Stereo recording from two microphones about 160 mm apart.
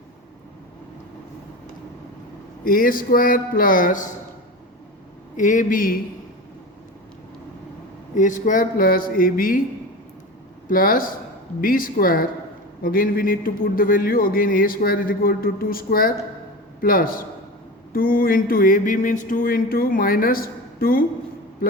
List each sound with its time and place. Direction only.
2.6 s a man's voice: 65° left (ahead or behind)
5.4 s a man's voice: 55° left (ahead or behind)
8.1 s a man's voice: 55° left (ahead or behind)
10.7 s a man's voice: 60° left (ahead or behind)